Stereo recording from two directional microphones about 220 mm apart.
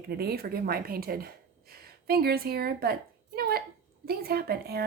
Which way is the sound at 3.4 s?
45° right (ahead or behind).